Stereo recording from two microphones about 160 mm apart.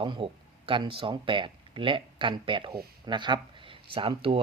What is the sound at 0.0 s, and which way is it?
Speech, 35° right (ahead or behind).